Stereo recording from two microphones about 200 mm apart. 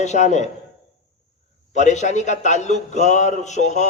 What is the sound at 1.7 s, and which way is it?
A man's voice, 35° left (ahead or behind).